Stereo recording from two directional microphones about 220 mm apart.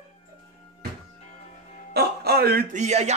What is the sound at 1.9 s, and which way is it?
Speech, 45° right (ahead or behind).